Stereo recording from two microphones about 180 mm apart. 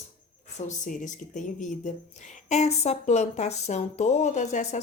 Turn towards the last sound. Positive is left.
turn(degrees=40)  # may be behind; listen again after turning